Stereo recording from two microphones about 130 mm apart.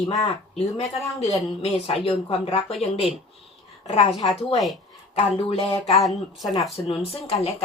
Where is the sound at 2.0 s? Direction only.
50° left (ahead or behind).